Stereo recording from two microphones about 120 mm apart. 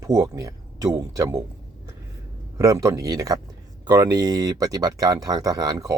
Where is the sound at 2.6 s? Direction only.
30° right (ahead or behind).